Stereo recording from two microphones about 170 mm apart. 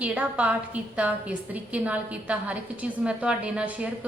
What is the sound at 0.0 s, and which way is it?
A woman's voice, 5° right (ahead or behind).